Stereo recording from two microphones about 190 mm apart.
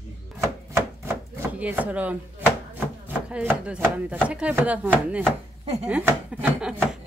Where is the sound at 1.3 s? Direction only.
10° right (ahead or behind).